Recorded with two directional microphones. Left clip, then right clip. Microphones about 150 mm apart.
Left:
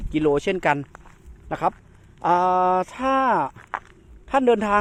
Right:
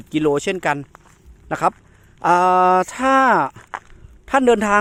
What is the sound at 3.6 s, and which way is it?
Speech, 20° right (ahead or behind).